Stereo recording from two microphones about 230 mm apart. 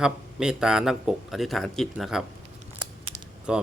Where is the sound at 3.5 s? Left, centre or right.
Centre.